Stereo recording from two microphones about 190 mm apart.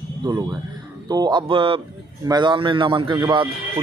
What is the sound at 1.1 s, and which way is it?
Speech, 20° right (ahead or behind).